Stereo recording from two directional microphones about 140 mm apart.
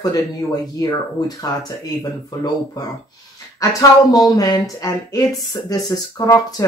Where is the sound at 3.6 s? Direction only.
25° left (ahead or behind).